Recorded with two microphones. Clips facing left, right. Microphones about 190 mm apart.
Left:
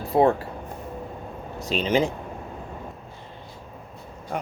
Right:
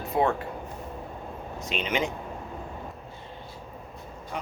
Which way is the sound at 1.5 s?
35° left (ahead or behind).